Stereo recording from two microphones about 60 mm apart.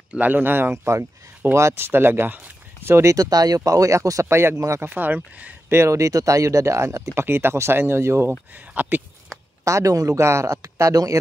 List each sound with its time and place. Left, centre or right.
0.1 s speech: right
1.9 s speech: right
2.9 s speech: right
3.2 s speech: right
4.3 s speech: right
4.6 s speech: right
4.8 s speech: right
5.7 s speech: right
7.2 s speech: right
8.5 s speech: right
9.7 s speech: right